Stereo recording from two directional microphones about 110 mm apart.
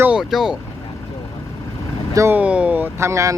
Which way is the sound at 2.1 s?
25° right (ahead or behind).